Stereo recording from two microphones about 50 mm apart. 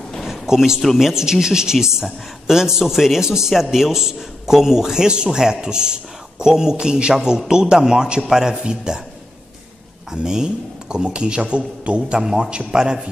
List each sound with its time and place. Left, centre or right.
0.2 s a sound: centre
0.9 s a man's voice: centre
10.1 s a man's voice: centre